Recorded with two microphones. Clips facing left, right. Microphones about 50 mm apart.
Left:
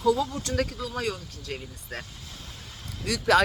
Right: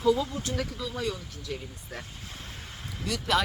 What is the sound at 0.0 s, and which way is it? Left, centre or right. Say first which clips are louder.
Speech: left 1 dB; left.